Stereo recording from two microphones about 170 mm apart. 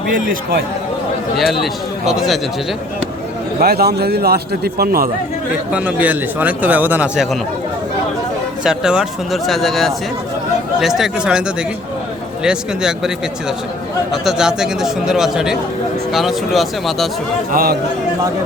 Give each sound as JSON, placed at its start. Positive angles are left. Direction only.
{"t": 0.1, "sound": "a man's voice", "side_deg": -55}
{"t": 1.4, "sound": "speech", "side_deg": 0}
{"t": 3.6, "sound": "a man's voice", "side_deg": -65}
{"t": 5.7, "sound": "speech", "side_deg": -10}
{"t": 8.6, "sound": "speech", "side_deg": -5}
{"t": 14.1, "sound": "speech", "side_deg": -5}
{"t": 17.5, "sound": "a man's voice", "side_deg": -60}